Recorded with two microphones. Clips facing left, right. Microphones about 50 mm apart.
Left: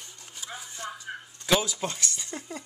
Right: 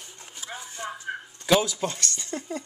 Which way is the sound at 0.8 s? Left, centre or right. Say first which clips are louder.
Right 3 dB; right.